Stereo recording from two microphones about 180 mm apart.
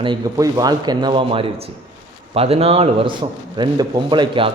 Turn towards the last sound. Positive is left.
turn(degrees=-25)  # may be behind; listen again after turning